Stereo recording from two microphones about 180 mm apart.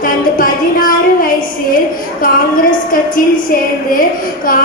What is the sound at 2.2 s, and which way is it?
Speech, 50° left (ahead or behind).